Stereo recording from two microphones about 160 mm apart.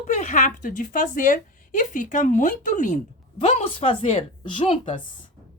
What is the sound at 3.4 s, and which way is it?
A woman's voice, 35° left (ahead or behind).